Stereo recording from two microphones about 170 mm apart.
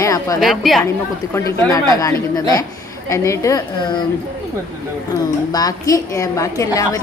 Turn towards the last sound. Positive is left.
turn(degrees=20)  # may be behind; listen again after turning